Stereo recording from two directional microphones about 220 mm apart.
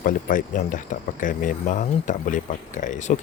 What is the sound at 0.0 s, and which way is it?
Speech, 35° left (ahead or behind).